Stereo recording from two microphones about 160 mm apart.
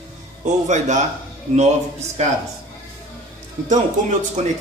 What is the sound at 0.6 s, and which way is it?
Speech, 50° right (ahead or behind).